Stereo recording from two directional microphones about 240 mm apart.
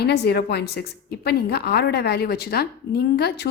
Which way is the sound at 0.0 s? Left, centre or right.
Left.